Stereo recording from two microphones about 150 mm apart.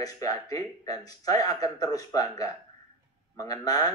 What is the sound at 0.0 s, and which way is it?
Speech, 25° left (ahead or behind).